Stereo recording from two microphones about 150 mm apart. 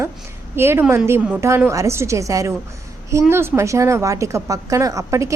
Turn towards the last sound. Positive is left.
turn(degrees=-20)  # may be behind; listen again after turning